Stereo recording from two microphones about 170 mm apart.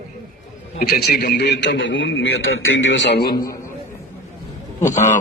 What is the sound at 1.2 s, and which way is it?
A man's voice, 75° left (ahead or behind).